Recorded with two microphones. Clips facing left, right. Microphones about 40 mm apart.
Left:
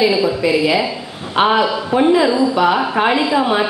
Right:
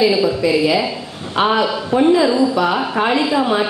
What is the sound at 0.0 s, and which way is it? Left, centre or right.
A woman's voice, centre.